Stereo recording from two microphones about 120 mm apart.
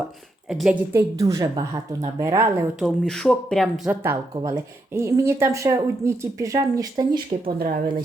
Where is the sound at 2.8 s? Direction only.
5° left (ahead or behind).